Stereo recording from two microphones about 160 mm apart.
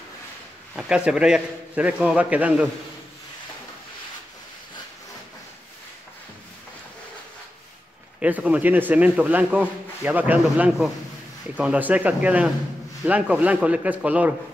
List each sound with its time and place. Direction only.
0.7 s a man's voice: 5° right (ahead or behind)
8.2 s a man's voice: 10° right (ahead or behind)